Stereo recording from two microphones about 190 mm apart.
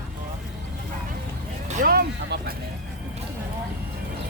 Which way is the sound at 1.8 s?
55° right (ahead or behind).